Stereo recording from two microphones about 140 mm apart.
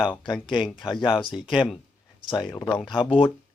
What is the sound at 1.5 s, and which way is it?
Speech, centre (ahead or behind).